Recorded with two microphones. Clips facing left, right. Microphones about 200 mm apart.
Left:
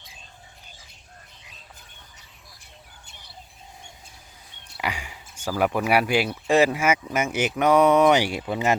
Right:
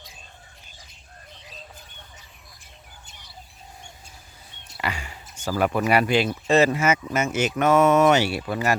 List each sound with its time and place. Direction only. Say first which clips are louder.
4.8 s speech: even; 15° left (ahead or behind)